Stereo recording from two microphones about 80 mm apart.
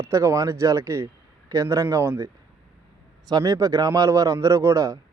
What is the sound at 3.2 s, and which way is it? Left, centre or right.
A man's voice, right.